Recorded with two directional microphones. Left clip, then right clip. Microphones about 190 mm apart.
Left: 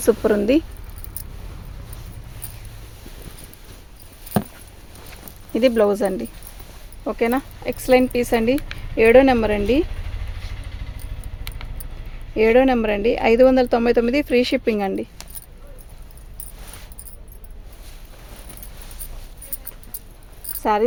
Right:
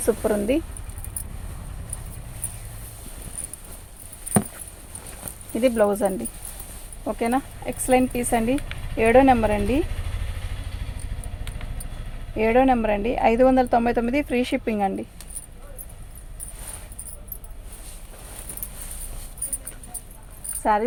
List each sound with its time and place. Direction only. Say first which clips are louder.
0.0 s speech: left 5 dB; 55° left (ahead or behind)
5.5 s speech: left 3 dB; 55° left (ahead or behind)
12.4 s speech: left 3 dB; 60° left (ahead or behind)
20.6 s insect: left 1 dB; 55° left (ahead or behind)